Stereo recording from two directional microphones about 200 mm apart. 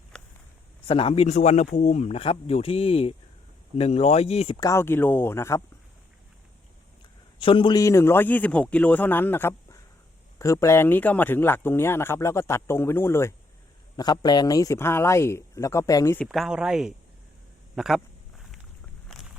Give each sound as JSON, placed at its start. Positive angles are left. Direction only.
{"t": 0.9, "sound": "a man's voice", "side_deg": 25}
{"t": 7.3, "sound": "a man's voice", "side_deg": 25}
{"t": 16.2, "sound": "speech", "side_deg": 0}
{"t": 17.7, "sound": "a sound", "side_deg": 0}